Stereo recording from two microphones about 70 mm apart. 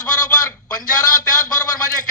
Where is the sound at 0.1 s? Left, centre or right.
Left.